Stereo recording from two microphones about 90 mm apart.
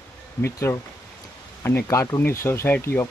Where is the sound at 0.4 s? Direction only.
30° left (ahead or behind).